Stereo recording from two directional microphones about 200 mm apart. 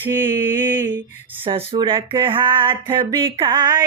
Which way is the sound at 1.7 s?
25° right (ahead or behind).